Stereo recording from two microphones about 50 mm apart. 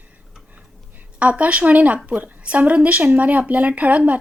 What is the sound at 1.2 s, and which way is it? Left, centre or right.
A woman's voice, right.